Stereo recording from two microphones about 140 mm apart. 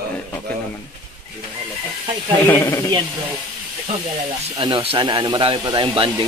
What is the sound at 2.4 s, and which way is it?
Speech, 20° left (ahead or behind).